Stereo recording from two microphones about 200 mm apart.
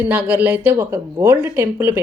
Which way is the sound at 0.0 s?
5° right (ahead or behind).